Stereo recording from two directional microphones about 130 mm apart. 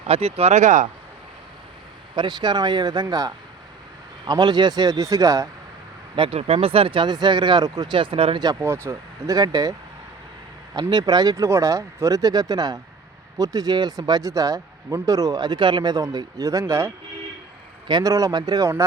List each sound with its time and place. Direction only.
0.1 s speech: 50° right (ahead or behind); by 0.9 s 70° right (ahead or behind)
2.1 s speech: 35° right (ahead or behind)
6.1 s speech: 45° right (ahead or behind)
8.6 s speech: 20° right (ahead or behind)
10.8 s speech: 35° right (ahead or behind)